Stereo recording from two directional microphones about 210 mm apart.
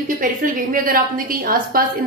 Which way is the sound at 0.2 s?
40° right (ahead or behind).